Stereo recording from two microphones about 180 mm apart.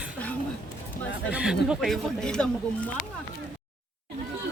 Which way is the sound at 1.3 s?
5° right (ahead or behind).